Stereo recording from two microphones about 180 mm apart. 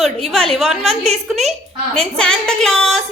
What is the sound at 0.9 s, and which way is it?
Speech, 35° right (ahead or behind).